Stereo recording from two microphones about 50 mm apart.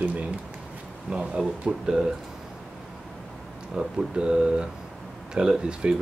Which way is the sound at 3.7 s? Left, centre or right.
Centre.